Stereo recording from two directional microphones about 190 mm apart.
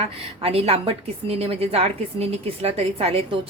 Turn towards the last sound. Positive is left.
turn(degrees=-30)  # may be behind; listen again after turning